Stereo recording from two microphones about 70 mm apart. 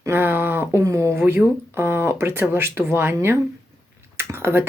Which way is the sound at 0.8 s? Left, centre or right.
Right.